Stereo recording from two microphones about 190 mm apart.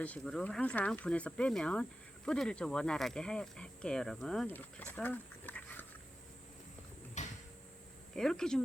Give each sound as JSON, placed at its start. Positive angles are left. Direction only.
{"t": 0.0, "sound": "speech", "side_deg": 5}
{"t": 7.2, "sound": "cupboard open or close", "side_deg": 40}
{"t": 8.1, "sound": "speech", "side_deg": 5}